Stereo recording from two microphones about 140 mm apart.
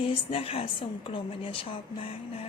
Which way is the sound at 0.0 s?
45° left (ahead or behind).